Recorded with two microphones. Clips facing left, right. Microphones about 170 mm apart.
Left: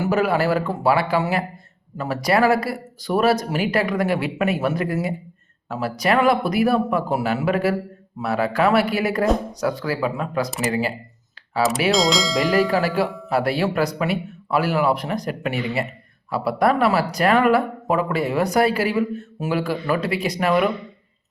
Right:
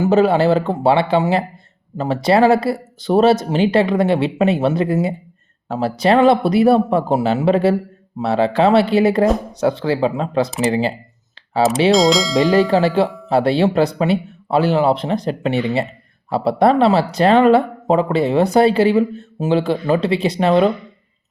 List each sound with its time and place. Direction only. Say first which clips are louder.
0.0 s speech: right 6 dB; 25° right (ahead or behind)
11.9 s speech: right 6 dB; centre (ahead or behind)
12.4 s speech: right 5 dB; 20° right (ahead or behind)